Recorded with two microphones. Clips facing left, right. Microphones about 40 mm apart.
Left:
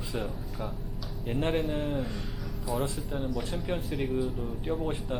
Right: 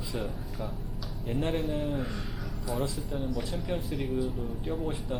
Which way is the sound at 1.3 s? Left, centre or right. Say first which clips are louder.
Left 1 dB; centre.